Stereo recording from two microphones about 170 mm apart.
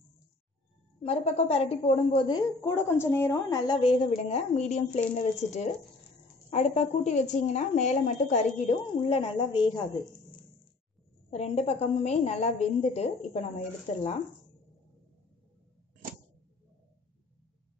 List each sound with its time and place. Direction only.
1.0 s a woman's voice: 40° left (ahead or behind)
11.2 s a woman's voice: 40° left (ahead or behind)